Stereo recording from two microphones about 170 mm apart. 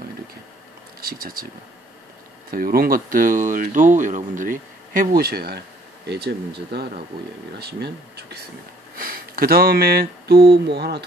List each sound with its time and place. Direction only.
1.0 s speech: 60° right (ahead or behind)
2.5 s speech: 60° right (ahead or behind)
8.9 s speech: 55° right (ahead or behind); by 11.1 s 75° right (ahead or behind)